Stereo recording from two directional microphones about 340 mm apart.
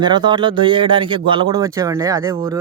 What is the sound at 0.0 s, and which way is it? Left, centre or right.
A man's voice, centre.